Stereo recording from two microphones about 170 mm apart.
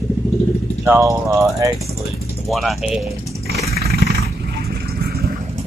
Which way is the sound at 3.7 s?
65° right (ahead or behind).